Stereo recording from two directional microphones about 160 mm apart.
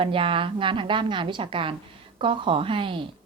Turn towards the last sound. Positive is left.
turn(degrees=-35)  # may be behind; listen again after turning